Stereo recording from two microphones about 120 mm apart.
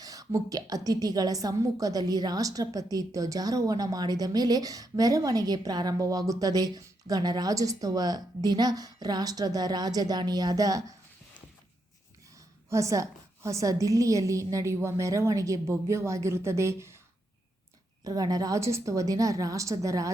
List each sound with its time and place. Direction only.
0.0 s a woman's voice: 30° right (ahead or behind)
12.7 s a woman's voice: 25° right (ahead or behind)
18.0 s a woman's voice: 30° right (ahead or behind)